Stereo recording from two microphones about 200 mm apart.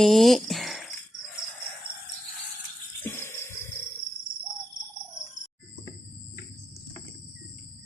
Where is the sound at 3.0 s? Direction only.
10° left (ahead or behind).